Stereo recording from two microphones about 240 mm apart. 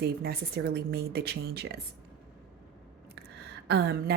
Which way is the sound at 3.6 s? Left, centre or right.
Right.